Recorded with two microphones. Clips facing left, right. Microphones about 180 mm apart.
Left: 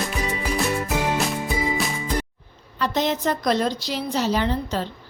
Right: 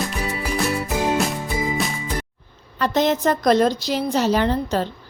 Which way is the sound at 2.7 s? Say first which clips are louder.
Right 4 dB; 50° right (ahead or behind).